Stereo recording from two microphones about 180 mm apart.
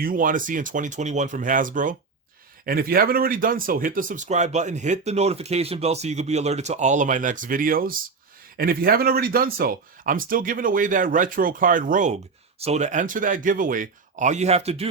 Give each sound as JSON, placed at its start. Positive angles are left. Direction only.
{"t": 0.0, "sound": "speech", "side_deg": -50}